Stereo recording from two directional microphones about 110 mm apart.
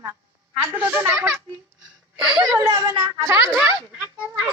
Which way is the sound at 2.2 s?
5° right (ahead or behind).